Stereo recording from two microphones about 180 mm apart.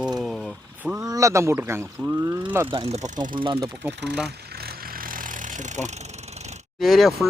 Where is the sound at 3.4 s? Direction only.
25° right (ahead or behind).